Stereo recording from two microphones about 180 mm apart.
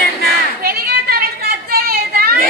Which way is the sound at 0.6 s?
55° right (ahead or behind).